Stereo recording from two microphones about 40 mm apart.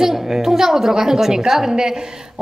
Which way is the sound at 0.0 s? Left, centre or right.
Centre.